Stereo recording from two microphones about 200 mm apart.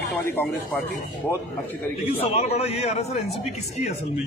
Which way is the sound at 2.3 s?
30° left (ahead or behind).